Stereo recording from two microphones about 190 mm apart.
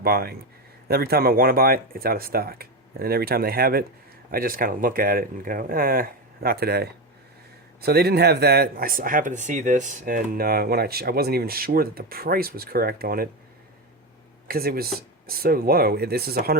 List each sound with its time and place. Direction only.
0.0 s speech: 55° right (ahead or behind)
14.4 s speech: 50° right (ahead or behind)